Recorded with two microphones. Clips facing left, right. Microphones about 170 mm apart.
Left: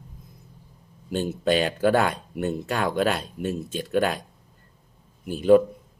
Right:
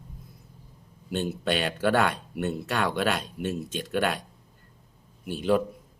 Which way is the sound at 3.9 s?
40° left (ahead or behind).